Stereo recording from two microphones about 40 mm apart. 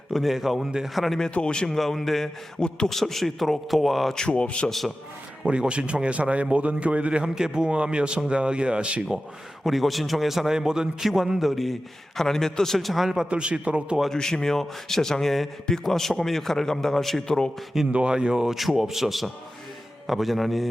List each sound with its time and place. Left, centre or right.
0.1 s a man's voice: centre
1.3 s speech: left
1.6 s a man's voice: centre
2.6 s speech: left
2.9 s a man's voice: centre
4.3 s speech: left
5.5 s speech: right
7.3 s speech: centre
9.6 s a man's voice: centre
12.2 s a man's voice: centre
13.3 s speech: right
14.1 s a man's voice: centre
17.9 s speech: right
18.8 s a man's voice: centre